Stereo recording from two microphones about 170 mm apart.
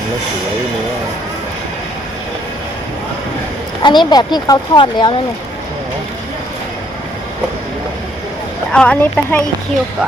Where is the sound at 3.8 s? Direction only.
25° left (ahead or behind).